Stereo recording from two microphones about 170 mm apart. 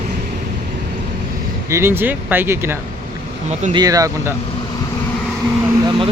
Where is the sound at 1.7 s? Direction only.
15° right (ahead or behind).